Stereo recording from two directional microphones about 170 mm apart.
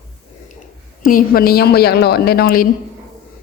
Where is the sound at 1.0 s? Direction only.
60° left (ahead or behind).